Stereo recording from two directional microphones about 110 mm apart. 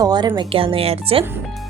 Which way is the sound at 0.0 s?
40° right (ahead or behind).